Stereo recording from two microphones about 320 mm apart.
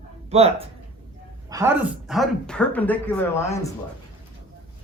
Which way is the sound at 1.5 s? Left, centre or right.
Centre.